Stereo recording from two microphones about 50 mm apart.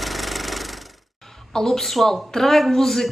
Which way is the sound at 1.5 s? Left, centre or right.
Centre.